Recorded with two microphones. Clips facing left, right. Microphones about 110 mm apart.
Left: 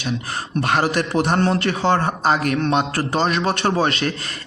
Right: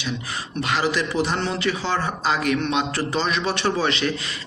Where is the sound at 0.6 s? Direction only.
50° left (ahead or behind).